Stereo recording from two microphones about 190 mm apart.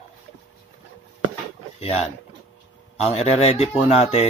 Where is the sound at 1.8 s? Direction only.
35° left (ahead or behind).